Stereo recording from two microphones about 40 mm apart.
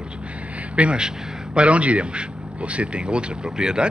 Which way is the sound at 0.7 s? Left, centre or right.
Right.